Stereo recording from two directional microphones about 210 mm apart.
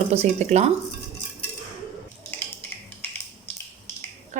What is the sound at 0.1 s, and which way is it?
Speech, 30° right (ahead or behind).